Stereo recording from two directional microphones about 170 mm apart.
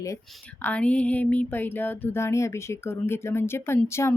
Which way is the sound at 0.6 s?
10° left (ahead or behind).